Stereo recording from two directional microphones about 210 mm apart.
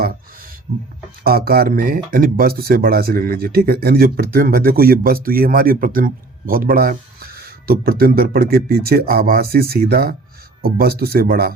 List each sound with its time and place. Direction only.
0.7 s speech: 25° right (ahead or behind)
1.2 s speech: 45° right (ahead or behind)